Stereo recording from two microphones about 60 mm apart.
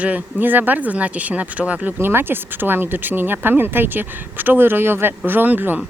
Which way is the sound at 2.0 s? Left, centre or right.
Right.